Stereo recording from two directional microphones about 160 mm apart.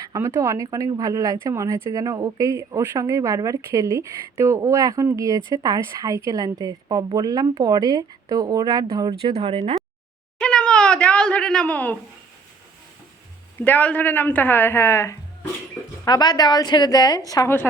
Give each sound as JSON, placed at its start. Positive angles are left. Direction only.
{"t": 0.0, "sound": "speech", "side_deg": -20}
{"t": 9.2, "sound": "speech", "side_deg": -40}
{"t": 10.4, "sound": "a sound", "side_deg": 5}
{"t": 13.6, "sound": "a woman's voice", "side_deg": 10}